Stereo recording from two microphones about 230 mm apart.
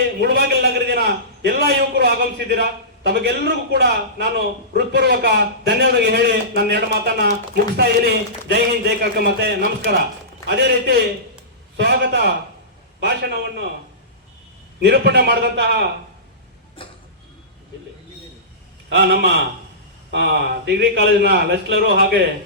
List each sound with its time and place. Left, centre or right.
0.2 s a man's voice: right
14.8 s a man's voice: right
18.9 s a man's voice: right